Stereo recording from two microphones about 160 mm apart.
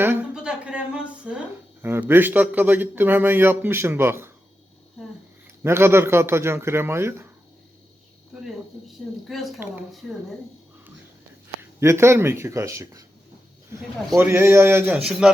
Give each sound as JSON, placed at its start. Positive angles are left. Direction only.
{"t": 0.0, "sound": "a man's voice", "side_deg": -10}
{"t": 5.6, "sound": "a man's voice", "side_deg": -15}
{"t": 9.2, "sound": "speech", "side_deg": 0}
{"t": 11.8, "sound": "a man's voice", "side_deg": -15}
{"t": 14.2, "sound": "a man's voice", "side_deg": -15}
{"t": 14.9, "sound": "speech", "side_deg": -5}